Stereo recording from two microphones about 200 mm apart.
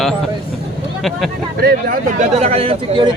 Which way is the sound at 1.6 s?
50° right (ahead or behind).